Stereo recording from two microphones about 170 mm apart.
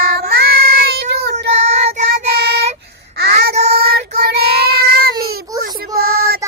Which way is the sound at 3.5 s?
40° right (ahead or behind).